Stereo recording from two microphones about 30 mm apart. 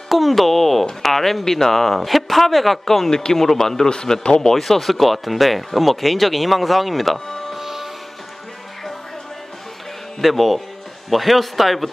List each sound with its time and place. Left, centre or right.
0.1 s speech: centre
3.9 s speech: left
4.4 s speech: centre
7.5 s music: centre
10.2 s speech: centre